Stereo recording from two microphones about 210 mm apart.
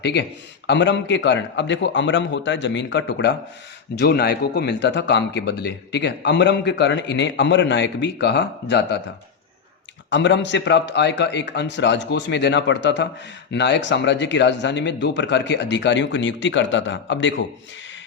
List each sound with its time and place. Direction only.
0.0 s a man's voice: 55° left (ahead or behind)
10.1 s a man's voice: 60° left (ahead or behind)